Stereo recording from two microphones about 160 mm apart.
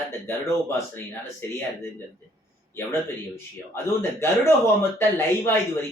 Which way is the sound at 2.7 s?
15° left (ahead or behind).